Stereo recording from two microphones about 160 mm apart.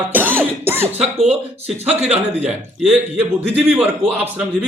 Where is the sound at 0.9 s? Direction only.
40° right (ahead or behind).